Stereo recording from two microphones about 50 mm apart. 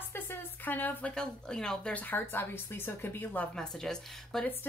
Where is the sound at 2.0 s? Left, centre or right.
Left.